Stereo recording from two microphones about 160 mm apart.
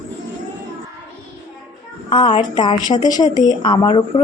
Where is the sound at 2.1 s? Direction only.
30° left (ahead or behind).